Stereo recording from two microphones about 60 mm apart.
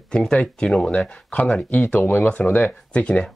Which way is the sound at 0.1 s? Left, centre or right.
Centre.